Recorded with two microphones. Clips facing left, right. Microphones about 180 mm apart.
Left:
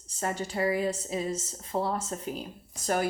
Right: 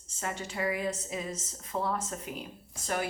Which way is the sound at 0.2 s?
35° left (ahead or behind).